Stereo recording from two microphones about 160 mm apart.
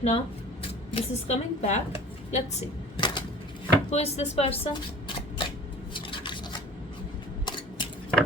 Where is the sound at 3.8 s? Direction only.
40° left (ahead or behind).